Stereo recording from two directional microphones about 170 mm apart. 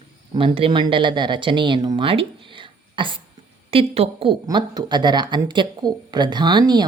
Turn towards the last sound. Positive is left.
turn(degrees=-25)  # may be behind; listen again after turning